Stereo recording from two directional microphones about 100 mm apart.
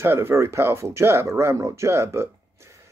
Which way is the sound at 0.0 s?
25° right (ahead or behind).